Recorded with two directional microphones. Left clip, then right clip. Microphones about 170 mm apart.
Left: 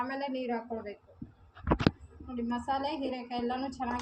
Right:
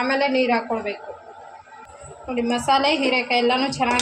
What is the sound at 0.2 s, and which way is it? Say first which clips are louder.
Speech: right 15 dB; 40° right (ahead or behind).